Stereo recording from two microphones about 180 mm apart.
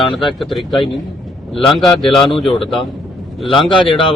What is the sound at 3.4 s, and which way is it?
Speech, 25° left (ahead or behind).